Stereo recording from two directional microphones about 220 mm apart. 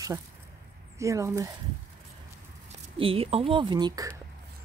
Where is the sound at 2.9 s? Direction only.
25° right (ahead or behind).